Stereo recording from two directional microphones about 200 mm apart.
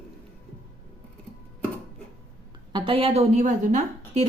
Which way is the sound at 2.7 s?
25° right (ahead or behind).